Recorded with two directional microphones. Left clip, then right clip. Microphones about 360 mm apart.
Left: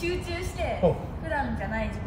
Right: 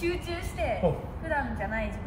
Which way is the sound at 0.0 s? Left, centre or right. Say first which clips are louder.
Left 1 dB; centre.